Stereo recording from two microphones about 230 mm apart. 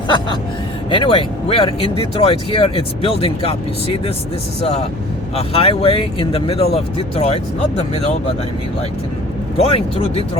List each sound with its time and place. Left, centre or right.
0.9 s speech: left
5.4 s speech: left
9.6 s speech: left